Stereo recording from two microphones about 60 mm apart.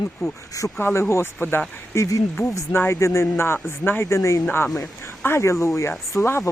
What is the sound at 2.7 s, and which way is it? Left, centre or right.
Speech, left.